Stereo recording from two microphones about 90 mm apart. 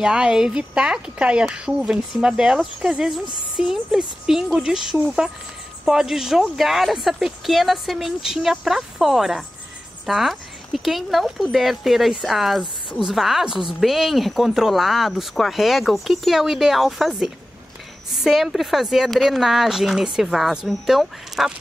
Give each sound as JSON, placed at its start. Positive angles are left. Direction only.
{"t": 0.0, "sound": "speech", "side_deg": -5}